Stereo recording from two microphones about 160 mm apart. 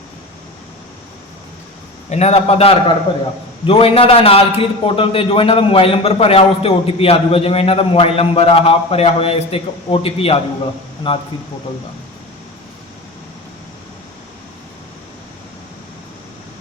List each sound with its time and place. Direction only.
2.0 s a man's voice: 45° left (ahead or behind)